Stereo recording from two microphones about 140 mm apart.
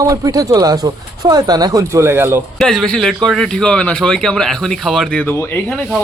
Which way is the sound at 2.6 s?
Centre (ahead or behind).